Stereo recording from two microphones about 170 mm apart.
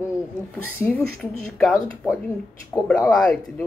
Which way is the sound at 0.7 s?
15° left (ahead or behind).